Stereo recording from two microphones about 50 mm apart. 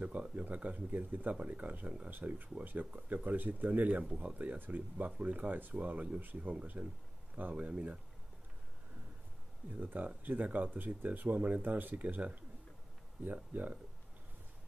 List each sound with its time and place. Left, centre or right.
0.0 s speech: right
4.0 s speech: centre
4.3 s speech: right
9.7 s speech: right